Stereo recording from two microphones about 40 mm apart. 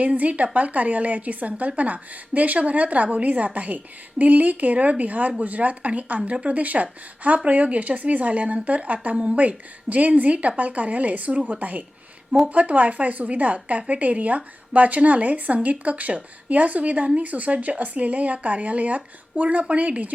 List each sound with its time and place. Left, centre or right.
0.0 s a woman's voice: right